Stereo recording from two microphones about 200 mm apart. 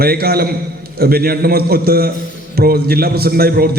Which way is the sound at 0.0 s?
50° right (ahead or behind).